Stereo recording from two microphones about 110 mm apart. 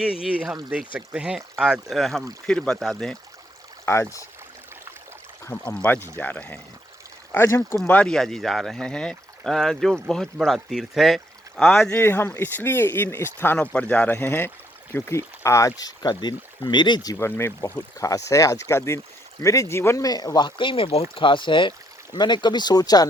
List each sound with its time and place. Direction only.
0.0 s speech: 5° right (ahead or behind)
3.8 s speech: 25° left (ahead or behind)
5.6 s speech: 10° left (ahead or behind)
7.9 s speech: 10° left (ahead or behind)
11.9 s speech: 20° left (ahead or behind); by 17.2 s 40° left (ahead or behind)
17.2 s speech: 20° left (ahead or behind)
17.7 s speech: 30° left (ahead or behind)